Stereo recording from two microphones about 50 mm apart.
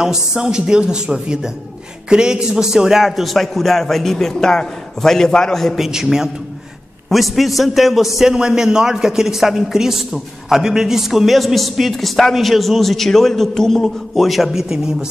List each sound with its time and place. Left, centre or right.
0.0 s a woman's voice: centre
5.8 s a woman's voice: centre